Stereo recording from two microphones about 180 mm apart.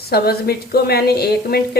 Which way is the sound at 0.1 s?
60° left (ahead or behind).